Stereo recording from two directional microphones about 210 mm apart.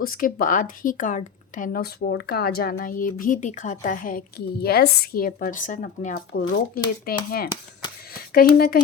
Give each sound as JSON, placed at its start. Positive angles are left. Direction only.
{"t": 0.0, "sound": "speech", "side_deg": 45}